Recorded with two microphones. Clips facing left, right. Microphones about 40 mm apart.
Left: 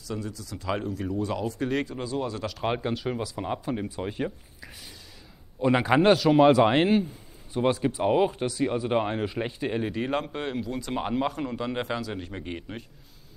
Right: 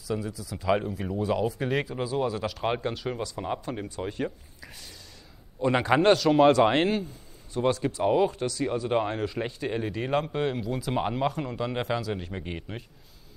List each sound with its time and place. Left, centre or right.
0.0 s speech: centre